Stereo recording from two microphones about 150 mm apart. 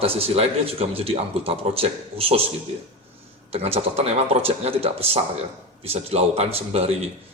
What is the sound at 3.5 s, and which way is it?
Speech, 40° right (ahead or behind).